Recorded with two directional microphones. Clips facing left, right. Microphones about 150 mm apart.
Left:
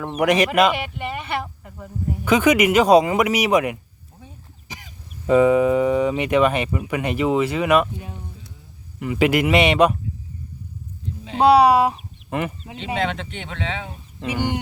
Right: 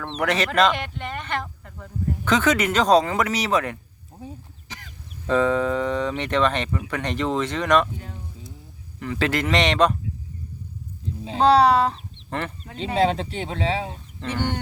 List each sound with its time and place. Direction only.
0.0 s speech: 10° left (ahead or behind)
11.3 s speech: 10° left (ahead or behind)
12.7 s speech: 35° right (ahead or behind)
14.2 s speech: 10° left (ahead or behind)